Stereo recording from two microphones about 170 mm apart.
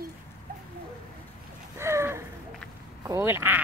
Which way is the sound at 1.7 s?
15° right (ahead or behind).